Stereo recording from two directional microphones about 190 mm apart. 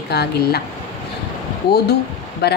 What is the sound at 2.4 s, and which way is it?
Speech, 60° left (ahead or behind).